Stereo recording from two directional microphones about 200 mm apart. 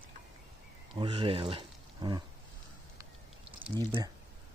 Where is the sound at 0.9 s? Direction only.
25° right (ahead or behind).